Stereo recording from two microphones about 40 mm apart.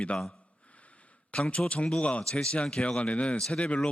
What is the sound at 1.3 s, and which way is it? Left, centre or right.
Speech, left.